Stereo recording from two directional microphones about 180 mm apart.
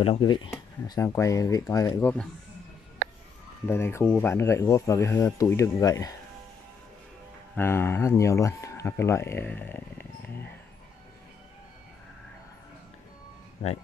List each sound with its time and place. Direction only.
0.0 s speech: 30° left (ahead or behind); by 2.2 s 10° left (ahead or behind)
3.0 s a sound: 55° right (ahead or behind)
3.6 s speech: 15° left (ahead or behind)
7.5 s speech: 15° left (ahead or behind)